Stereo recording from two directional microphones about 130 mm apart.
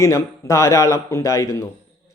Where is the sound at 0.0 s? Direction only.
25° left (ahead or behind).